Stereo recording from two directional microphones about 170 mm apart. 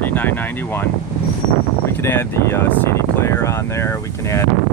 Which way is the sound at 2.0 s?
15° left (ahead or behind).